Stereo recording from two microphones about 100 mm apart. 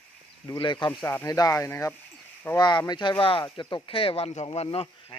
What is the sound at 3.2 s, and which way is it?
Speech, 60° left (ahead or behind).